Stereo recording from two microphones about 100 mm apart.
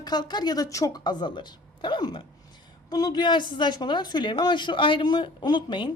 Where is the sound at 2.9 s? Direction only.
40° left (ahead or behind).